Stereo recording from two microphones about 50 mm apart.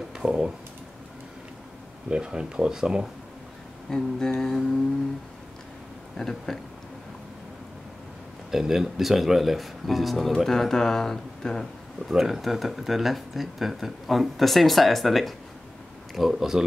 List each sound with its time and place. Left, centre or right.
0.2 s speech: centre
2.0 s speech: centre
3.9 s a sound: centre
6.1 s a sound: centre
8.5 s speech: centre
12.1 s speech: centre